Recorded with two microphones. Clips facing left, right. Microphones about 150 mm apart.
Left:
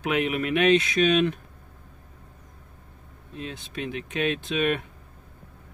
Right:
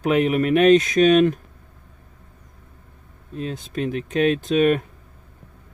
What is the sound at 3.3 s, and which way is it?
Speech, 40° right (ahead or behind).